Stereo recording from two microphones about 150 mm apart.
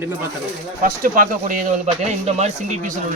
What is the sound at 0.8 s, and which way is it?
Speech, 65° right (ahead or behind).